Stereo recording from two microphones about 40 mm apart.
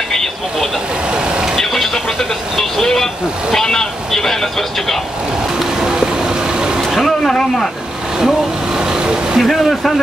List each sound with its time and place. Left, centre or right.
1.1 s vehicle: right
1.6 s vehicle: centre
3.5 s a man's voice: centre
5.8 s vehicle: centre
7.0 s a man's voice: centre
8.7 s vehicle: centre
9.4 s a man's voice: centre